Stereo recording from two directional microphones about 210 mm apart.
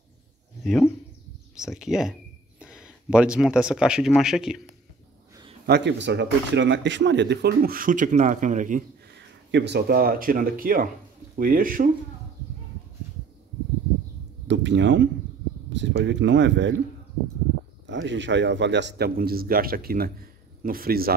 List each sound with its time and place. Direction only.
0.7 s speech: centre (ahead or behind)
5.7 s speech: 55° right (ahead or behind); by 8.8 s 35° right (ahead or behind)
9.5 s speech: 55° right (ahead or behind)
14.5 s speech: 60° right (ahead or behind)
17.8 s speech: 60° right (ahead or behind)